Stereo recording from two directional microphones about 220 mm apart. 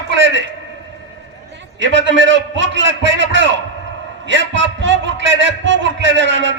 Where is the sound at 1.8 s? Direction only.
55° right (ahead or behind).